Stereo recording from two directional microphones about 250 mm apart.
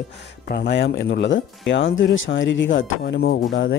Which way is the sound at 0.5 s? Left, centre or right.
Left.